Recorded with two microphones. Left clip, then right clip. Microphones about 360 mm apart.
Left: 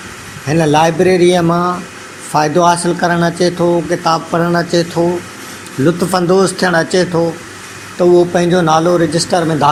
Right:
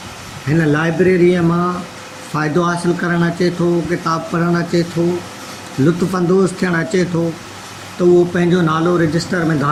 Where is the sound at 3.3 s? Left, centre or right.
Left.